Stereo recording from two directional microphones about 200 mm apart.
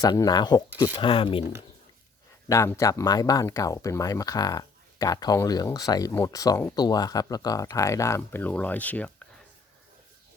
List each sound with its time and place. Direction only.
0.0 s speech: 20° left (ahead or behind)
2.5 s speech: 15° left (ahead or behind)